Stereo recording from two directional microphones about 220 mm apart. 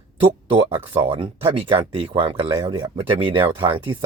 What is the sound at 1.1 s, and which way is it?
Speech, 20° right (ahead or behind).